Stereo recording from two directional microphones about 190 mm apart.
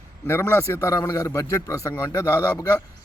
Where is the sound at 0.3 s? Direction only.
10° left (ahead or behind).